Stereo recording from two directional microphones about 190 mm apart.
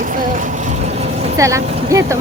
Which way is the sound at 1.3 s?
15° right (ahead or behind).